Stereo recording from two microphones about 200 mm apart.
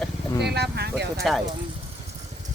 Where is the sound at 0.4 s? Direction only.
55° right (ahead or behind).